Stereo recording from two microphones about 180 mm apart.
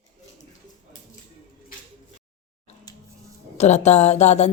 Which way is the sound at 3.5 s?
40° left (ahead or behind).